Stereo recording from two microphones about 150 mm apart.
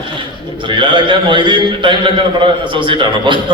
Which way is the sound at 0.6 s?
30° right (ahead or behind).